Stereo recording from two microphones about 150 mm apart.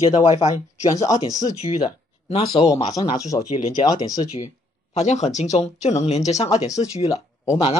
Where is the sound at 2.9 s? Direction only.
25° left (ahead or behind).